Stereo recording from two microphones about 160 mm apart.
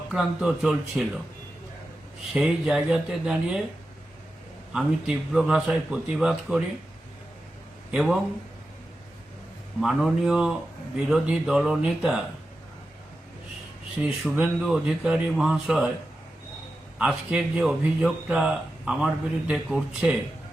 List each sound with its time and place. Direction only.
0.1 s speech: centre (ahead or behind)
2.3 s speech: 5° right (ahead or behind)
4.7 s speech: 5° right (ahead or behind)
7.9 s a man's voice: 5° right (ahead or behind)
9.8 s speech: centre (ahead or behind)
14.0 s speech: 5° right (ahead or behind)
17.0 s speech: 5° right (ahead or behind)